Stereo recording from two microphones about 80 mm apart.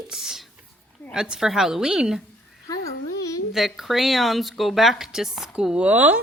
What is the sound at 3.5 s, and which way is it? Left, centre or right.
Speech, centre.